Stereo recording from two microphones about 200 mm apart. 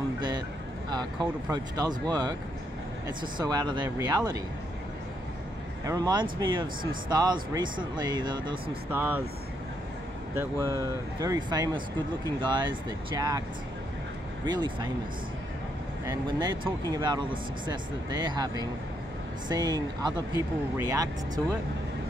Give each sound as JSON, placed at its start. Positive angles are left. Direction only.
{"t": 0.8, "sound": "speech", "side_deg": -20}
{"t": 5.9, "sound": "speech", "side_deg": -20}
{"t": 8.9, "sound": "speech", "side_deg": -10}
{"t": 11.1, "sound": "speech", "side_deg": -20}
{"t": 14.4, "sound": "speech", "side_deg": -20}
{"t": 16.3, "sound": "speech", "side_deg": -20}